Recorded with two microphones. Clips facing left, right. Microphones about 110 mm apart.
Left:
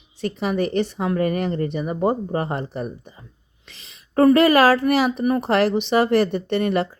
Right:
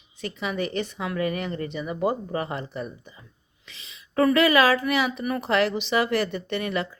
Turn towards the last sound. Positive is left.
turn(degrees=40)  # may be behind; listen again after turning